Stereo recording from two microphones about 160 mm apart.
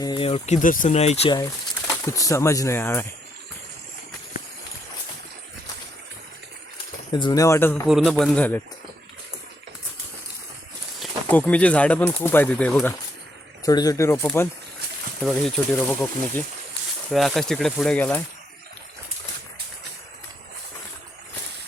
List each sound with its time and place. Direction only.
0.0 s speech: 30° left (ahead or behind); by 0.9 s 55° left (ahead or behind)
0.9 s speech: 40° left (ahead or behind)
2.0 s speech: 20° left (ahead or behind)
7.1 s speech: 30° left (ahead or behind)
7.9 s speech: centre (ahead or behind)
11.3 s speech: 10° left (ahead or behind)
13.7 s speech: 25° left (ahead or behind)
15.2 s speech: 5° left (ahead or behind)